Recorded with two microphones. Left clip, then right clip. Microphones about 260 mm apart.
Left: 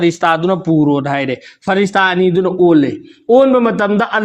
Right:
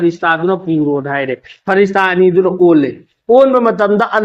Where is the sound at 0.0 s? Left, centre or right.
Left.